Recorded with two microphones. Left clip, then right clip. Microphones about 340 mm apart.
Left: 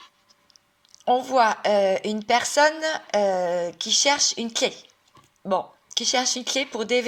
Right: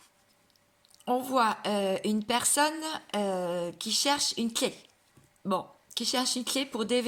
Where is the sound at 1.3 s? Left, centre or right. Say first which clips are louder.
Left 7 dB; centre.